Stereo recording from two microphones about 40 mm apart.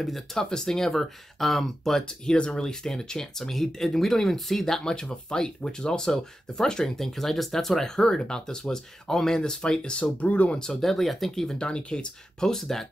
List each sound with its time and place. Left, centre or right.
0.0 s speech: centre
0.4 s speech: centre; by 10.6 s left
10.6 s speech: centre
11.5 s speech: left
12.4 s speech: centre